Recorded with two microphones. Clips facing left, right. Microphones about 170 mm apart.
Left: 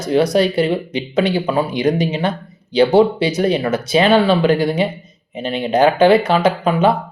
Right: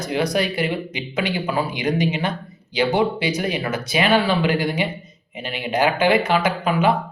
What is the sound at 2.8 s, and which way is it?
Speech, 30° left (ahead or behind).